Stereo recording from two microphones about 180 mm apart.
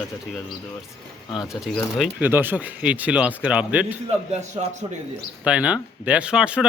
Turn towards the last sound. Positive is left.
turn(degrees=-5)  # may be behind; listen again after turning